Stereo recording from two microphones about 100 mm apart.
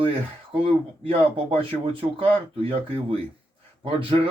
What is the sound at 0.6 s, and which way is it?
Speech, 70° right (ahead or behind).